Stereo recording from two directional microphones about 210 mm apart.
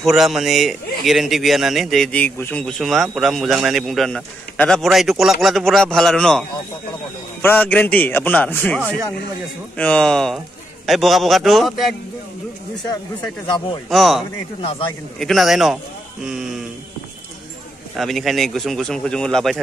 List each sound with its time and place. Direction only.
0.0 s a man's voice: centre (ahead or behind)
7.4 s a man's voice: 10° left (ahead or behind)
13.8 s a man's voice: centre (ahead or behind)
14.6 s speech: 25° left (ahead or behind)
15.1 s a man's voice: centre (ahead or behind)
17.9 s a man's voice: centre (ahead or behind)